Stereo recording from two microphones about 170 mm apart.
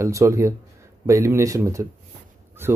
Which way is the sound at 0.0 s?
20° right (ahead or behind).